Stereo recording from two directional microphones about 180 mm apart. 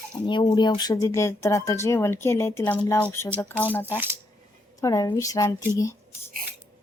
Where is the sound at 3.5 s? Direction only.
10° right (ahead or behind).